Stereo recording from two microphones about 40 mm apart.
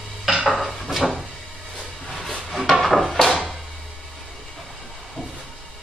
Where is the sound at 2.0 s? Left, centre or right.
Centre.